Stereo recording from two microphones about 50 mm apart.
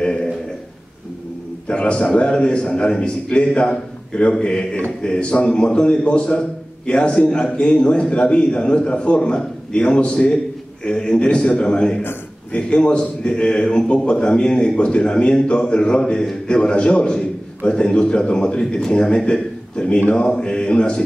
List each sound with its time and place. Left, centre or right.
1.7 s a man's voice: left